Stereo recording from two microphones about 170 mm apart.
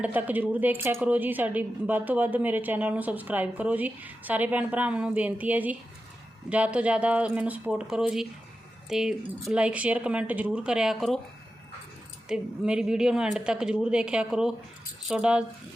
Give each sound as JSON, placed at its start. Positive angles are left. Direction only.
{"t": 0.0, "sound": "a woman's voice", "side_deg": -10}
{"t": 12.3, "sound": "a woman's voice", "side_deg": -5}